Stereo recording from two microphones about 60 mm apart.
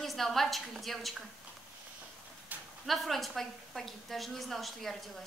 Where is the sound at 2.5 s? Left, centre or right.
Right.